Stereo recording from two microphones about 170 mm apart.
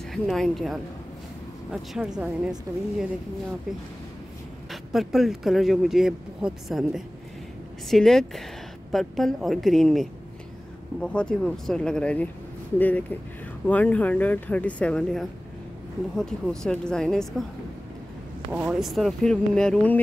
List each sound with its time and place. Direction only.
0.1 s a man's voice: centre (ahead or behind)
4.6 s a man's voice: centre (ahead or behind)
18.5 s a man's voice: 5° right (ahead or behind)